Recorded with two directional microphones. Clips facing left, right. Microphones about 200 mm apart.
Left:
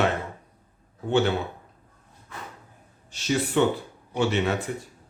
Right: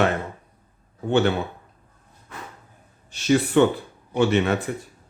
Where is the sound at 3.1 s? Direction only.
60° right (ahead or behind).